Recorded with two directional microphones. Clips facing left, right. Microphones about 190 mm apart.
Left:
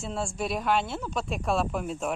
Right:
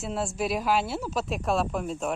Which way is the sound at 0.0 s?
5° right (ahead or behind).